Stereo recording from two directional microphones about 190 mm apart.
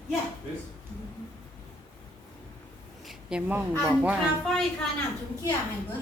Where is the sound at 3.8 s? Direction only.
10° right (ahead or behind).